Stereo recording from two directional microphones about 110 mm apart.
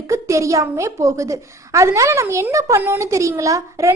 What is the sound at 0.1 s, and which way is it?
A woman's voice, 30° right (ahead or behind).